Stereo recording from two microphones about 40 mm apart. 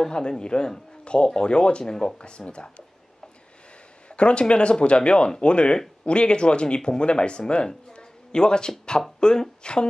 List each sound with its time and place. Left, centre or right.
0.0 s speech: centre
4.1 s speech: left